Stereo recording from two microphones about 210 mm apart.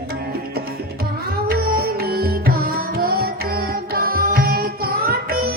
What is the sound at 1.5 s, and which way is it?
Music, 45° right (ahead or behind).